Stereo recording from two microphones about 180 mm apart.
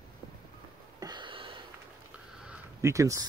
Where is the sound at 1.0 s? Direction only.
25° right (ahead or behind).